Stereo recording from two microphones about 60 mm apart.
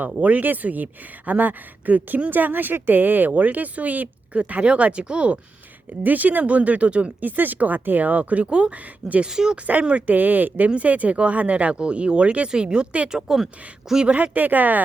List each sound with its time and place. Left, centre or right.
0.2 s speech: right
9.3 s speech: centre
9.6 s speech: right
13.1 s speech: centre
14.1 s speech: right